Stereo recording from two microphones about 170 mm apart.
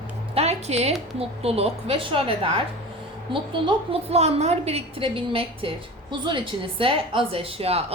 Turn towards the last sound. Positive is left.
turn(degrees=-35)  # may be behind; listen again after turning